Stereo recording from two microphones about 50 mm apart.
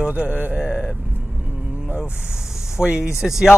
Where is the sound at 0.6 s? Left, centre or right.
Centre.